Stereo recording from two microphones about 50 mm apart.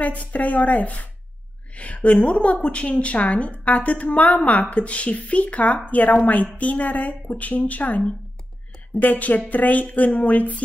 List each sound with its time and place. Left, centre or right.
0.0 s a woman's voice: left
9.0 s speech: left